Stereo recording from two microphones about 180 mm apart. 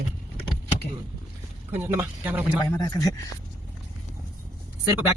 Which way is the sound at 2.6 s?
20° left (ahead or behind).